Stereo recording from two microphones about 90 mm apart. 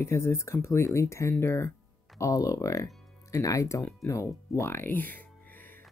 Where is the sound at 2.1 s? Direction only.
40° left (ahead or behind); by 5.2 s 20° left (ahead or behind).